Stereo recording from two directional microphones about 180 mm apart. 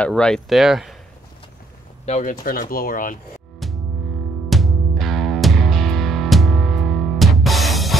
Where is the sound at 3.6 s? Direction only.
Centre (ahead or behind).